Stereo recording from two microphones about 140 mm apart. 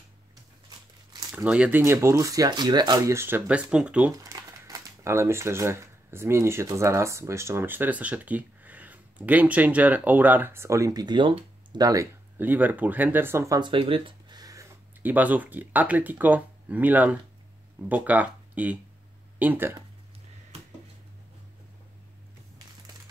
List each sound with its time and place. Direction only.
1.3 s speech: 10° right (ahead or behind)
1.8 s speech: 20° right (ahead or behind)
4.1 s speech: 25° right (ahead or behind)
12.4 s speech: 15° right (ahead or behind)
13.6 s a sound: 35° right (ahead or behind)
15.0 s speech: 10° right (ahead or behind)